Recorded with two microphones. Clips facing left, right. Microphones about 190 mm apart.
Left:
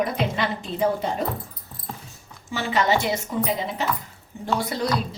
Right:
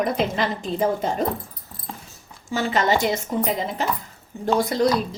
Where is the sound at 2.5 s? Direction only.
45° right (ahead or behind).